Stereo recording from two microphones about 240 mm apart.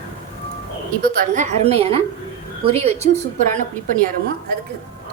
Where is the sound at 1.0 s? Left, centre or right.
Right.